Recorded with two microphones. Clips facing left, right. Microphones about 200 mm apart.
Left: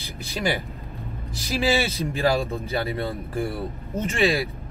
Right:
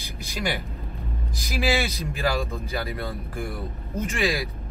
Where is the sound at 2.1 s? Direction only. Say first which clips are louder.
Left 5 dB; 30° left (ahead or behind).